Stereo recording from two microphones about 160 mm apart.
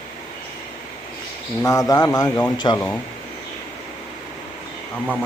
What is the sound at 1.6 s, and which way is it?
A man's voice, 20° left (ahead or behind).